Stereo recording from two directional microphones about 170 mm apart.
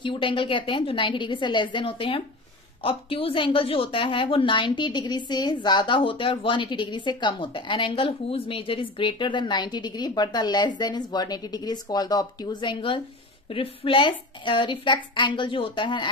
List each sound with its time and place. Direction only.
0.0 s a woman's voice: 30° left (ahead or behind)